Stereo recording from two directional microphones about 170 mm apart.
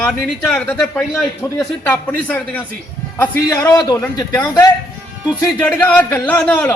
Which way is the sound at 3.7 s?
20° left (ahead or behind).